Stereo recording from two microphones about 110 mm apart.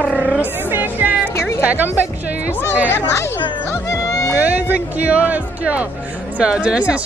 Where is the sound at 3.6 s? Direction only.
30° left (ahead or behind).